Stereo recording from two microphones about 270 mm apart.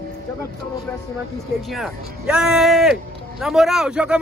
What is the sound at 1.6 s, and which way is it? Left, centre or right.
Speech, centre.